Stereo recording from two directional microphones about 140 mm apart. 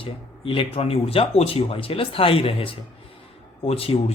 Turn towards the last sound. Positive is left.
turn(degrees=45)  # may be behind; listen again after turning